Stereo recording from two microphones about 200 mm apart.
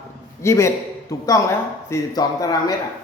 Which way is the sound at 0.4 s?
15° left (ahead or behind).